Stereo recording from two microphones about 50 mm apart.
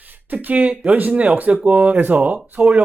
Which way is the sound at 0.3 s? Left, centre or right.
Right.